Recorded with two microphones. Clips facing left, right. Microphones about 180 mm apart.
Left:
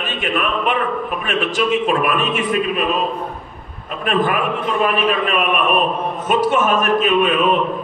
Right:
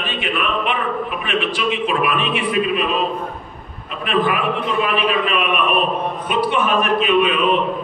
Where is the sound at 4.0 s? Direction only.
45° left (ahead or behind).